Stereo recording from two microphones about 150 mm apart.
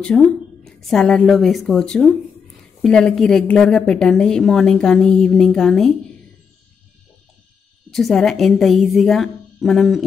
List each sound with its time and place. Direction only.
0.0 s a woman's voice: 5° left (ahead or behind)
7.9 s a woman's voice: centre (ahead or behind)